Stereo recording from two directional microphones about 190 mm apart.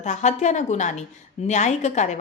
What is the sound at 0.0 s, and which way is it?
A woman's voice, 40° left (ahead or behind).